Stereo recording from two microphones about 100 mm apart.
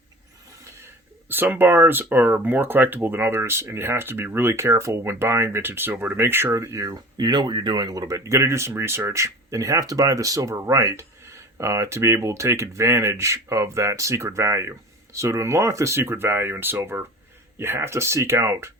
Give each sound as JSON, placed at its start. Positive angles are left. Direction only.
{"t": 1.3, "sound": "speech", "side_deg": -20}